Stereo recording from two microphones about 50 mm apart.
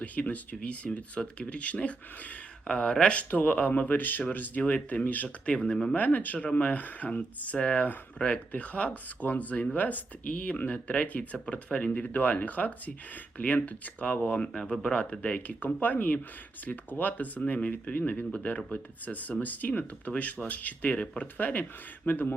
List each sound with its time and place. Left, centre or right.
0.0 s speech: left
4.6 s speech: left
5.5 s speech: centre
6.0 s speech: left; by 15.2 s centre
15.2 s speech: left